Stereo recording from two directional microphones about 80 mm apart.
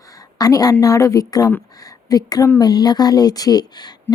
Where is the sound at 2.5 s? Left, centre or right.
Left.